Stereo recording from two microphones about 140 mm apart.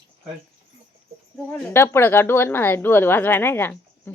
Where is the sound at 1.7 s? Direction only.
15° left (ahead or behind).